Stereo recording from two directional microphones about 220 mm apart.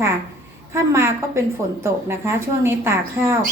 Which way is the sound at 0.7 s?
10° right (ahead or behind).